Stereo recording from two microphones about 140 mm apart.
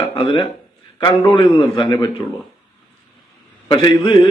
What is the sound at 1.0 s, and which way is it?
A man's voice, 35° left (ahead or behind).